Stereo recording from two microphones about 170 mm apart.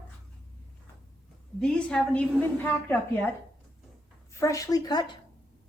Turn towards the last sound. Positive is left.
turn(degrees=25)  # may be behind; listen again after turning